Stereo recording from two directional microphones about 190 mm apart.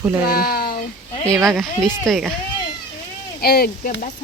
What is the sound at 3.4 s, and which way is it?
Speech, 55° left (ahead or behind).